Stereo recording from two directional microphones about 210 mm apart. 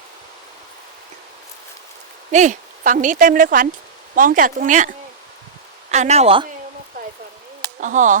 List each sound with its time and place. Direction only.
2.3 s a woman's voice: 35° right (ahead or behind)
7.8 s a woman's voice: 35° right (ahead or behind)